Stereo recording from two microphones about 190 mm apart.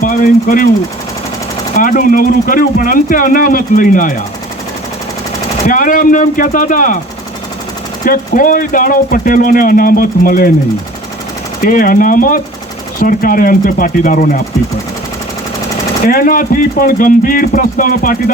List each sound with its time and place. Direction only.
0.0 s speech: 45° left (ahead or behind)
1.7 s speech: 45° left (ahead or behind)
5.6 s speech: 45° left (ahead or behind)
8.0 s speech: 45° left (ahead or behind)
11.6 s speech: 50° left (ahead or behind)
16.0 s speech: 50° left (ahead or behind)